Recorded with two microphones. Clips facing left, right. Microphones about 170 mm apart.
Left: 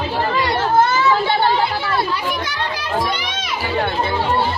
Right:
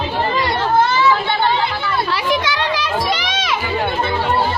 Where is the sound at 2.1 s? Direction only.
90° right.